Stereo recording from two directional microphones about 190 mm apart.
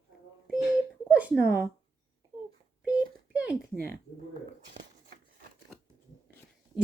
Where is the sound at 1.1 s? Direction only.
5° right (ahead or behind).